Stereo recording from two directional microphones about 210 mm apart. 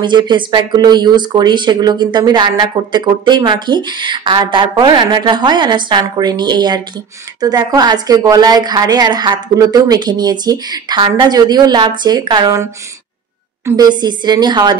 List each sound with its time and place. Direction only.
0.0 s speech: 20° right (ahead or behind)
13.7 s speech: 20° right (ahead or behind)